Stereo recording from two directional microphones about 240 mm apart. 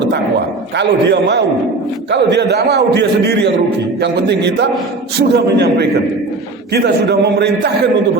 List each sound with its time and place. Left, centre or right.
0.8 s a man's voice: right